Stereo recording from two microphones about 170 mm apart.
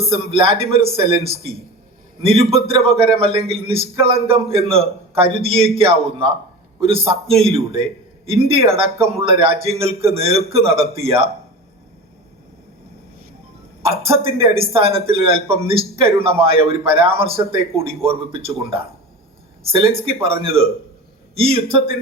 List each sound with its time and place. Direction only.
0.3 s speech: 35° right (ahead or behind)
13.8 s speech: 35° right (ahead or behind)